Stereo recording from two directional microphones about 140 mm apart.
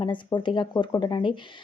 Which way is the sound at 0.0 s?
35° left (ahead or behind).